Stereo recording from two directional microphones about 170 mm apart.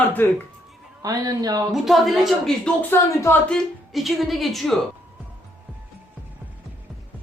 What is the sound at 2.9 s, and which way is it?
Speech, 15° left (ahead or behind).